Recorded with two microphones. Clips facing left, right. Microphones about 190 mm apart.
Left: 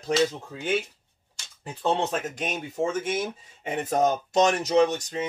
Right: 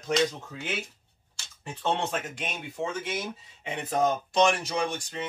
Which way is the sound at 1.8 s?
35° left (ahead or behind).